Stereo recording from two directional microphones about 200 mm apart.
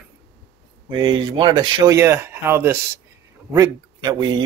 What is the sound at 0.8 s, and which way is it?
A man's voice, 20° right (ahead or behind).